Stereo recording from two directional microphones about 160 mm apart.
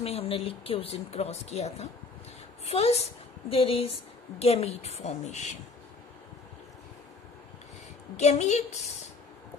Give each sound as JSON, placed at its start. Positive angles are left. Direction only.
{"t": 0.0, "sound": "a woman's voice", "side_deg": 40}
{"t": 8.2, "sound": "a woman's voice", "side_deg": 45}